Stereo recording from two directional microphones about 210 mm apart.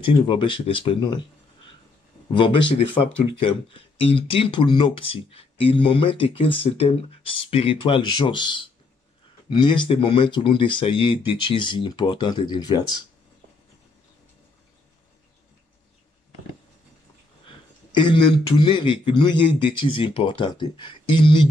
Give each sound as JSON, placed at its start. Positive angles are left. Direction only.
{"t": 0.0, "sound": "speech", "side_deg": 25}
{"t": 2.3, "sound": "speech", "side_deg": 25}
{"t": 17.5, "sound": "speech", "side_deg": 20}